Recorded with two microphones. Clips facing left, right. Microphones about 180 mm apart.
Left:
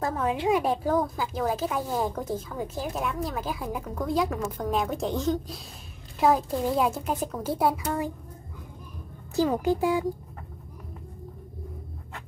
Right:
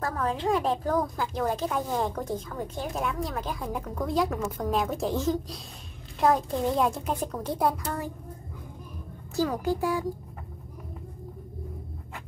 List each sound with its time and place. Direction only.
0.0 s a woman's voice: 20° left (ahead or behind)
0.8 s speech: centre (ahead or behind)
9.3 s a woman's voice: 20° left (ahead or behind)